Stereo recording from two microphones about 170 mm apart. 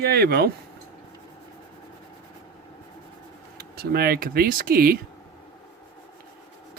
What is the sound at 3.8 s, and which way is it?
Speech, 65° right (ahead or behind).